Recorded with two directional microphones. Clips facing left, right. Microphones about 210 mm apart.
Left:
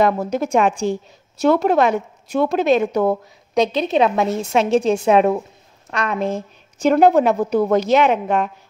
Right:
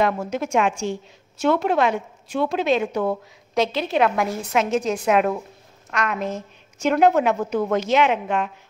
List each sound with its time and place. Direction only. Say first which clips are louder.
0.0 s a woman's voice: left 4 dB; 35° left (ahead or behind)
3.5 s a woman's voice: left 4 dB; 20° left (ahead or behind); by 8.5 s 40° left (ahead or behind)